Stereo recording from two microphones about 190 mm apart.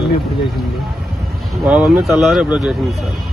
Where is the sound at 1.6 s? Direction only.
5° right (ahead or behind).